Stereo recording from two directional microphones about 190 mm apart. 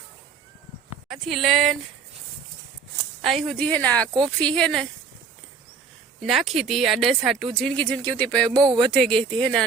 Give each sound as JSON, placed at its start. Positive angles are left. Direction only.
{"t": 1.0, "sound": "speech", "side_deg": 0}
{"t": 3.2, "sound": "speech", "side_deg": 0}
{"t": 6.2, "sound": "speech", "side_deg": 0}
{"t": 8.5, "sound": "a sound", "side_deg": -20}
{"t": 8.8, "sound": "speech", "side_deg": 5}